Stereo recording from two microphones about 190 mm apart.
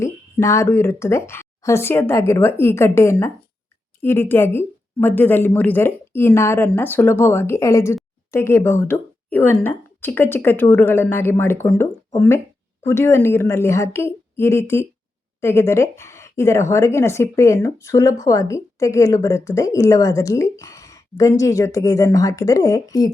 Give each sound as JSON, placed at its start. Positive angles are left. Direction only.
{"t": 0.0, "sound": "speech", "side_deg": 15}